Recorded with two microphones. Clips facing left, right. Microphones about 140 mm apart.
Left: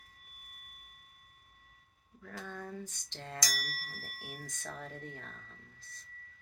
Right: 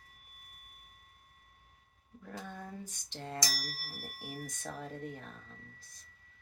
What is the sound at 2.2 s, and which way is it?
Speech, 15° right (ahead or behind).